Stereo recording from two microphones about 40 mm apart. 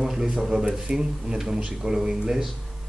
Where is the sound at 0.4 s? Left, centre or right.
Centre.